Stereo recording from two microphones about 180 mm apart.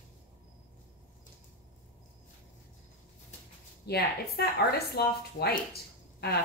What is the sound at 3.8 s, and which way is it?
Speech, 60° left (ahead or behind).